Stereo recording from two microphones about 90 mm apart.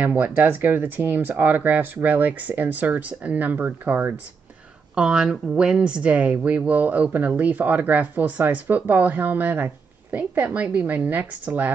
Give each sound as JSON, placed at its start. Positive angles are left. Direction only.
{"t": 0.0, "sound": "speech", "side_deg": -20}